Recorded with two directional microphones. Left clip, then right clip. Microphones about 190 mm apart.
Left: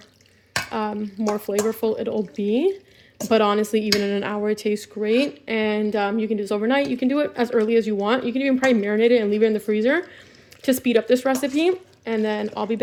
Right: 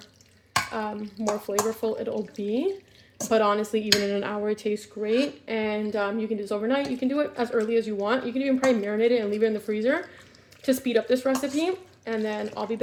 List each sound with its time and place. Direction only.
0.7 s a woman's voice: 50° left (ahead or behind)